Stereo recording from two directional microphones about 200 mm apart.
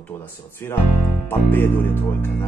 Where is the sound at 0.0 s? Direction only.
10° left (ahead or behind).